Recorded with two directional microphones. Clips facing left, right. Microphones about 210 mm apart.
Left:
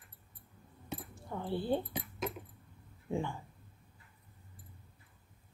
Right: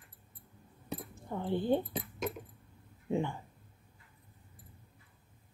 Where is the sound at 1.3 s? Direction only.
20° right (ahead or behind).